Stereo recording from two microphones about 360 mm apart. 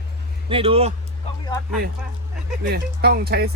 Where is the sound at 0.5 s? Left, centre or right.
Centre.